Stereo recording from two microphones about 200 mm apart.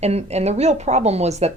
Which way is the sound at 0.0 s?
30° right (ahead or behind).